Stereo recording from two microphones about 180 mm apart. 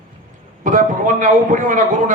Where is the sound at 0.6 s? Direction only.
45° right (ahead or behind).